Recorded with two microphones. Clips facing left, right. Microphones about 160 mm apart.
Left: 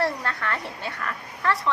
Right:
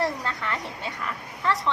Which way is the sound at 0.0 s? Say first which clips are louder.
Left 1 dB; 20° right (ahead or behind).